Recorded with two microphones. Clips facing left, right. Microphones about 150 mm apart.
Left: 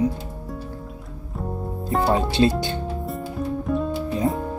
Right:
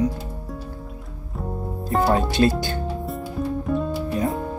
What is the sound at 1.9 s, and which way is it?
Speech, centre (ahead or behind).